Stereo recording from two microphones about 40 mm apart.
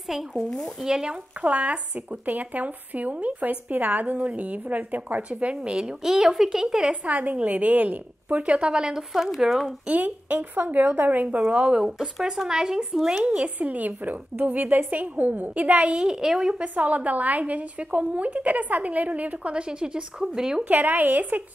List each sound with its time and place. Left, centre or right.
0.1 s speech: centre
0.8 s speech: centre
1.4 s speech: right; by 6.9 s centre
6.9 s speech: right
8.5 s speech: right
9.4 s speech: centre
9.8 s a woman's voice: right
11.5 s speech: right
13.6 s a woman's voice: right
15.9 s speech: centre
16.6 s speech: right; by 20.6 s centre
20.6 s a woman's voice: right